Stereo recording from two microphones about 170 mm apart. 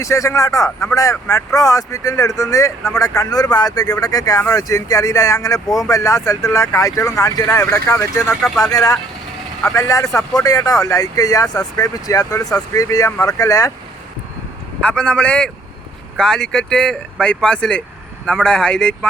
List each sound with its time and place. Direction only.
0.0 s speech: 20° left (ahead or behind)
8.4 s speech: centre (ahead or behind)
8.6 s speech: 20° left (ahead or behind)
14.8 s speech: 5° left (ahead or behind)